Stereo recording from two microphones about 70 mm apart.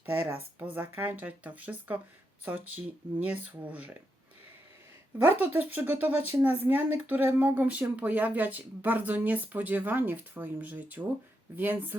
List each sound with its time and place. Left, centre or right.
0.0 s a woman's voice: right
5.2 s a woman's voice: right